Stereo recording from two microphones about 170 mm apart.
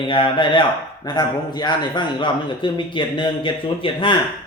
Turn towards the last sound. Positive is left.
turn(degrees=30)  # may be behind; listen again after turning